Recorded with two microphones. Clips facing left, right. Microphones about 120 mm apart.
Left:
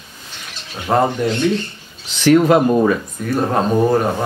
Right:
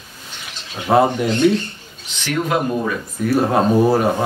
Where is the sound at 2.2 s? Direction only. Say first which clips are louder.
Left 9 dB; 45° left (ahead or behind).